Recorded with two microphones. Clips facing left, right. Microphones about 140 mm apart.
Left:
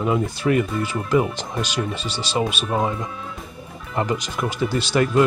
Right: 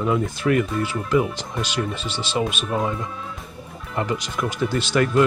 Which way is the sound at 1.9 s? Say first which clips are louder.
Even; 10° left (ahead or behind).